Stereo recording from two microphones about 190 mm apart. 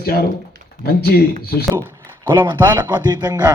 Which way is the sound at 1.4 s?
55° left (ahead or behind).